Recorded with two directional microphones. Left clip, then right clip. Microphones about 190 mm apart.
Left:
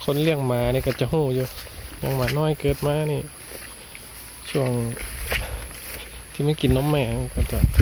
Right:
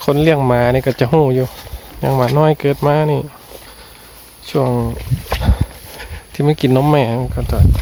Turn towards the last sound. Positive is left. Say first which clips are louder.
# right 9 dB
turn(degrees=-25)  # may be behind; listen again after turning